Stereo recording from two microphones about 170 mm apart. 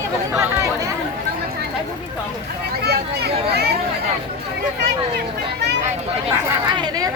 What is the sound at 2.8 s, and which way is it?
Speech, 70° right (ahead or behind).